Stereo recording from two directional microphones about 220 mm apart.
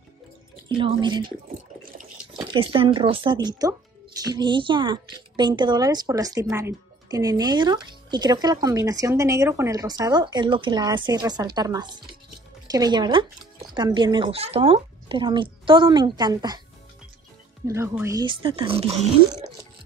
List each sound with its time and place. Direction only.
0.7 s speech: 20° right (ahead or behind)
2.3 s speech: 20° right (ahead or behind)
17.6 s speech: 10° right (ahead or behind); by 19.0 s 25° right (ahead or behind)
19.2 s a sound: 20° right (ahead or behind)